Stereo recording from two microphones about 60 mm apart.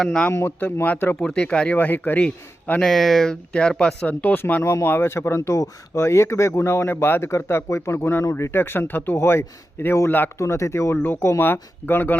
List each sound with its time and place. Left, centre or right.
0.0 s speech: centre
0.4 s speech: left
1.2 s speech: centre; by 2.2 s left
2.8 s speech: centre
3.5 s speech: centre
4.0 s speech: left
4.6 s speech: left
5.4 s speech: left
8.2 s speech: left
8.5 s speech: left
9.1 s speech: left
10.3 s speech: left